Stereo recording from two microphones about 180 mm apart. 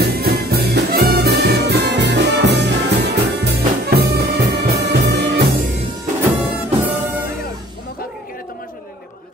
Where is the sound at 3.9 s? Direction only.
65° right (ahead or behind).